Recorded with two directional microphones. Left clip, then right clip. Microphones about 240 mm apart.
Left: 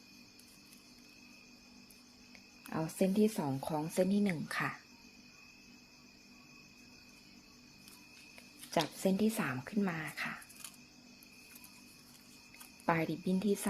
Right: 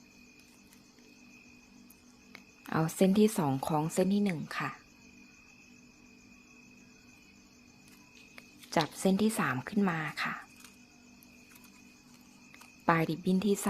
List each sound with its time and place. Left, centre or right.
2.6 s speech: right; by 4.8 s centre
8.4 s speech: right
12.8 s speech: right